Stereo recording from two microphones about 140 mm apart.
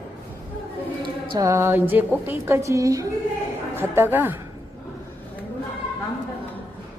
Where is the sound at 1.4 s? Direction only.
20° right (ahead or behind).